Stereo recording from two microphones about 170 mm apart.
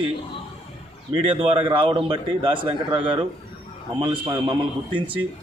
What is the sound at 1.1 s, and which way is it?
A man's voice, 30° right (ahead or behind).